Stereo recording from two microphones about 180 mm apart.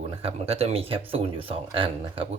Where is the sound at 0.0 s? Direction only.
35° right (ahead or behind).